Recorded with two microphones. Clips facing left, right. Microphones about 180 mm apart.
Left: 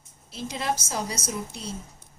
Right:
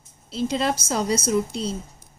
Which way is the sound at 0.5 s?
70° right (ahead or behind).